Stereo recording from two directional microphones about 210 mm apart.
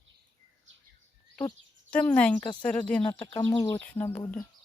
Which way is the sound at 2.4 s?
20° left (ahead or behind).